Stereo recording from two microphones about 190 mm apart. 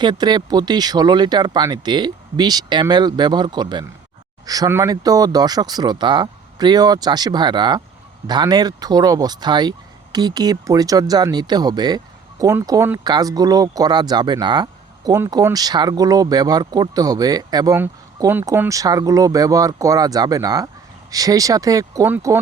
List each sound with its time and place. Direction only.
0.0 s speech: 25° right (ahead or behind)